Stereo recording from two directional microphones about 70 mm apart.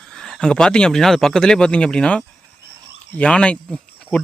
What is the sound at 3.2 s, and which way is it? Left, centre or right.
Speech, centre.